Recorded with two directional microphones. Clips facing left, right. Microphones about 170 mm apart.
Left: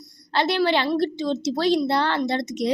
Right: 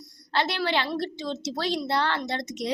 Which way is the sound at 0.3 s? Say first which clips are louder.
Left 5 dB; 20° left (ahead or behind).